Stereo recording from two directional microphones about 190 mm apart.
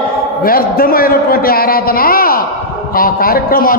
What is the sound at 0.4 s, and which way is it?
A man's voice, 50° left (ahead or behind).